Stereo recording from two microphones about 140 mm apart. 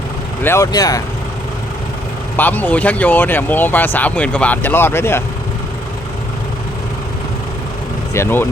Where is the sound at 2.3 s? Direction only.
10° left (ahead or behind).